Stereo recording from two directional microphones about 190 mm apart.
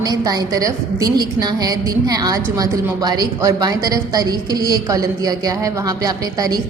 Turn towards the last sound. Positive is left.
turn(degrees=-20)  # may be behind; listen again after turning